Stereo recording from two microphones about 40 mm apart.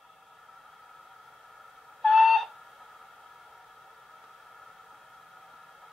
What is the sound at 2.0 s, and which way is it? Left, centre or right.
Owl, centre.